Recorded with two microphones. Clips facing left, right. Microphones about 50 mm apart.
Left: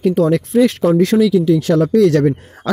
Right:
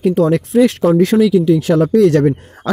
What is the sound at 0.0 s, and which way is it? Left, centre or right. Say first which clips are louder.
Speech: right 1 dB; centre.